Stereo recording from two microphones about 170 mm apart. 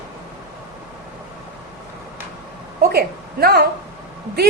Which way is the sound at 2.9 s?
65° right (ahead or behind).